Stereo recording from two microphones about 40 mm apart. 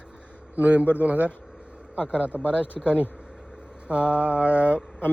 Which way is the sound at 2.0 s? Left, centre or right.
Left.